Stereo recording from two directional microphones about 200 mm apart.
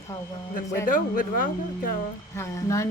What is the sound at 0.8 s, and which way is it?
Speech, 45° left (ahead or behind).